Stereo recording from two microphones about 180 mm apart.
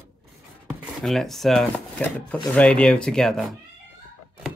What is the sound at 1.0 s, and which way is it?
Speech, centre (ahead or behind).